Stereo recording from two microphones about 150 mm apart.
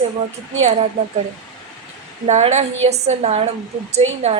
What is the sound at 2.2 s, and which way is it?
A woman's voice, 50° right (ahead or behind).